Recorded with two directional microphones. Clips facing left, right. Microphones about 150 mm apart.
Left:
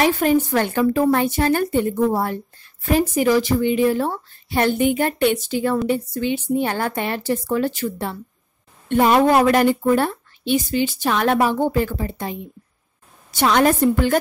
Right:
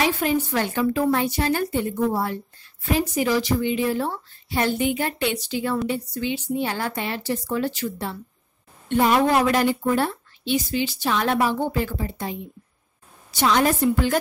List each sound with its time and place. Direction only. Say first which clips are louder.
0.0 s a woman's voice: left 5 dB; 50° left (ahead or behind)